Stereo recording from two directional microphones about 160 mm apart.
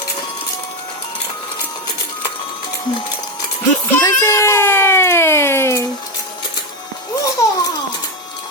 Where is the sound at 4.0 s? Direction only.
15° left (ahead or behind).